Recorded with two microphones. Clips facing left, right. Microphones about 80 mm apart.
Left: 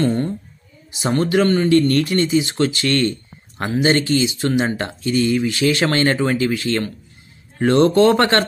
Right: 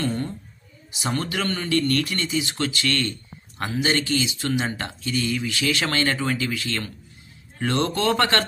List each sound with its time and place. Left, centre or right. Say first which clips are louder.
1.0 s speech: left 9 dB; left